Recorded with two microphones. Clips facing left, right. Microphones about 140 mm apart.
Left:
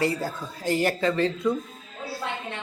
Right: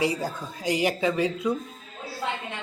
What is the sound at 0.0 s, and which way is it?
Speech, 15° right (ahead or behind).